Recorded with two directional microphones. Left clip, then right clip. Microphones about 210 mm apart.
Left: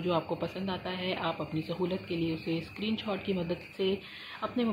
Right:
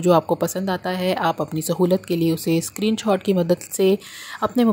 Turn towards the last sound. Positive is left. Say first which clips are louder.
# right 12 dB
turn(degrees=-50)  # may be behind; listen again after turning